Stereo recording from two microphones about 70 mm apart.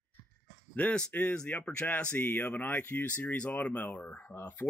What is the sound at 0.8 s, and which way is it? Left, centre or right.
Speech, centre.